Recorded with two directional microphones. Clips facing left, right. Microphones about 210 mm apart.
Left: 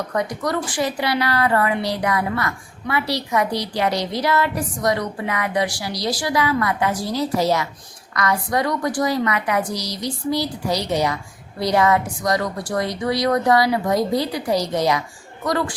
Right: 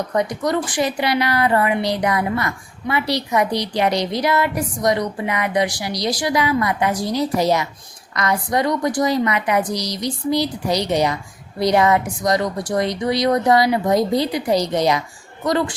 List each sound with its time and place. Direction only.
0.1 s a woman's voice: 20° right (ahead or behind)